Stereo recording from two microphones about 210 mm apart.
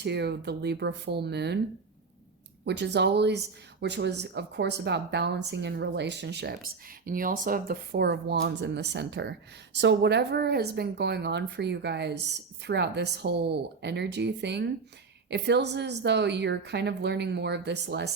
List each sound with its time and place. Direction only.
0.0 s speech: 50° right (ahead or behind)
2.6 s speech: 55° right (ahead or behind)
7.0 s speech: 40° right (ahead or behind)